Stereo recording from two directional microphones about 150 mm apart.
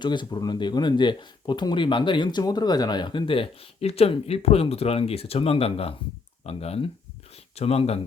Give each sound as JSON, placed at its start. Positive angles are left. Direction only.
{"t": 0.0, "sound": "speech", "side_deg": 30}